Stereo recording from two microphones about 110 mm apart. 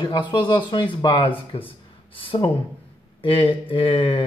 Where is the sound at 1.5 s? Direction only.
55° left (ahead or behind).